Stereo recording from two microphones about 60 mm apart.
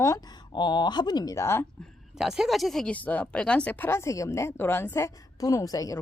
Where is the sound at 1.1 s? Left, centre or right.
Left.